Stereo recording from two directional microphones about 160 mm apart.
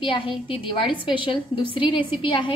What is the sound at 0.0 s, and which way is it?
A woman's voice, 30° left (ahead or behind).